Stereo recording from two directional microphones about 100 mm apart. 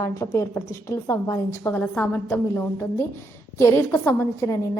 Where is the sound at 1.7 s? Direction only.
10° left (ahead or behind).